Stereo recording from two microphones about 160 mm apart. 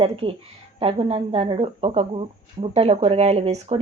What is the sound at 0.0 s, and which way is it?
Speech, 35° right (ahead or behind).